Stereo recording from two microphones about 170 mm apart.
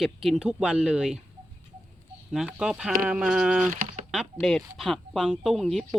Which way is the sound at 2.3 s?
5° right (ahead or behind).